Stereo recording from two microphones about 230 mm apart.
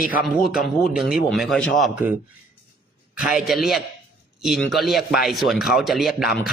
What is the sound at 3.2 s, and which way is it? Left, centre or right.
A man's voice, centre.